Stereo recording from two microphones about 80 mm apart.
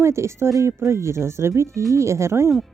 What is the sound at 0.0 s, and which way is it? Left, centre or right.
Speech, right.